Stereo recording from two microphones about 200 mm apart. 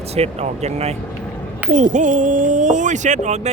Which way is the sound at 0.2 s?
30° right (ahead or behind).